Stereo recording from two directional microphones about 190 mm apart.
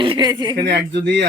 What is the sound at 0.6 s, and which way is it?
Speech, 65° right (ahead or behind).